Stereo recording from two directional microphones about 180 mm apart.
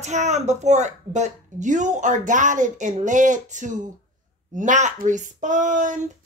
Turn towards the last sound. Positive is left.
turn(degrees=-45)  # may be behind; listen again after turning